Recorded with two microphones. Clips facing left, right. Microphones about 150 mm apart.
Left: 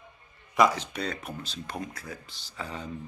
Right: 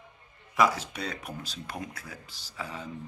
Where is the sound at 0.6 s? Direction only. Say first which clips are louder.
Left 2 dB; 5° right (ahead or behind).